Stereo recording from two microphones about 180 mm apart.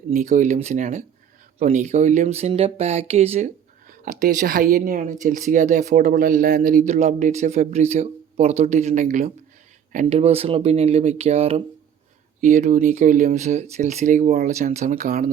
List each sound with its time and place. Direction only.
0.1 s speech: 40° right (ahead or behind)